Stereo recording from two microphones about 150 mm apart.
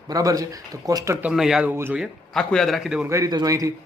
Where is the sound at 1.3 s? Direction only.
5° right (ahead or behind).